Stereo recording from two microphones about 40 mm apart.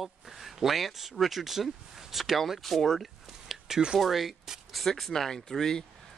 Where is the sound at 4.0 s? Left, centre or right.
Centre.